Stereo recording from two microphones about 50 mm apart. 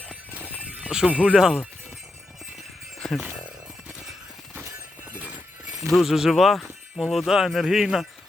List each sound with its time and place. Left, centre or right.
0.8 s speech: centre
1.4 s speech: centre
3.0 s a sound: centre
5.9 s speech: centre